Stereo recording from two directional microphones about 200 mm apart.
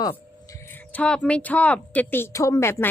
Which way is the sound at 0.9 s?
5° left (ahead or behind).